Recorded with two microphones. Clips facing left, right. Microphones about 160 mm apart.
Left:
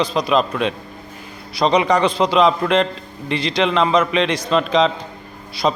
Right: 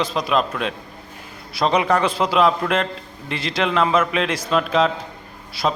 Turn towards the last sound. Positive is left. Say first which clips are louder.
# left 3 dB
turn(degrees=-5)  # may be behind; listen again after turning